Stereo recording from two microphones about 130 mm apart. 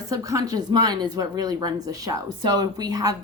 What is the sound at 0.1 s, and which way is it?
A woman's voice, 25° right (ahead or behind).